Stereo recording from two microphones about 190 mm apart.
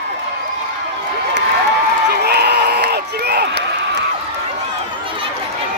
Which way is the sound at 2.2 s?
60° right (ahead or behind).